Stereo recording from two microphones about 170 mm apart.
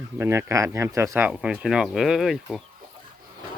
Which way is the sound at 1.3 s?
5° right (ahead or behind).